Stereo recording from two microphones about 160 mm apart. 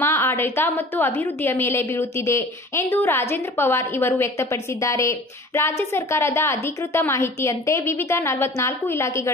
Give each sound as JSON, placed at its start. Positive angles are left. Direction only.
{"t": 0.0, "sound": "a woman's voice", "side_deg": 15}